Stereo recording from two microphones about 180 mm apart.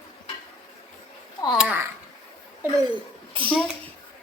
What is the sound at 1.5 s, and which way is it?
Speech, 10° right (ahead or behind).